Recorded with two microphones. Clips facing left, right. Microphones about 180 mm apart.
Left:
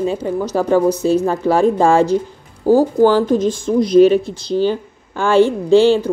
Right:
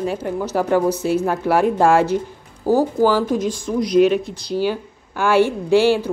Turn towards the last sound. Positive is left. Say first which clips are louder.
# left 4 dB
turn(degrees=-10)  # may be behind; listen again after turning